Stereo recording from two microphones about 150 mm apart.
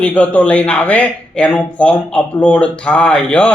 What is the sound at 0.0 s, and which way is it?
Speech, 10° left (ahead or behind).